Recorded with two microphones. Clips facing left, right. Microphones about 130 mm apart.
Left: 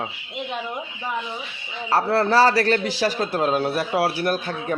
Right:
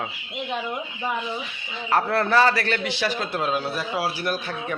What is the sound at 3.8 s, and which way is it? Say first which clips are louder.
Speech: left 5 dB; 60° left (ahead or behind).